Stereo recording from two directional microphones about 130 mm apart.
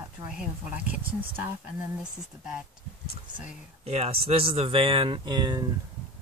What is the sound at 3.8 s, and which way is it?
Speech, 50° right (ahead or behind).